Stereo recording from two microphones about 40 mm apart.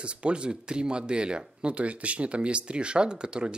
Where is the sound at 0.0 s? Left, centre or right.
Right.